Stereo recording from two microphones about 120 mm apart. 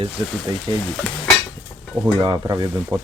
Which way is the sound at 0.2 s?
45° right (ahead or behind).